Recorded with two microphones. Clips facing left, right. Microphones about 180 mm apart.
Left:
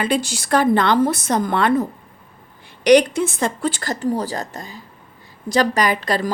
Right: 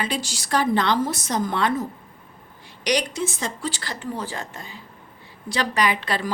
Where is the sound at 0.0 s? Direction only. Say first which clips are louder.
Left 7 dB; 55° left (ahead or behind).